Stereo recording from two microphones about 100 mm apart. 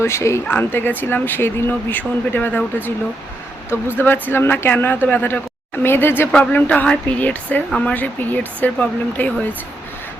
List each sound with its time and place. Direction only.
0.0 s speech: 25° left (ahead or behind)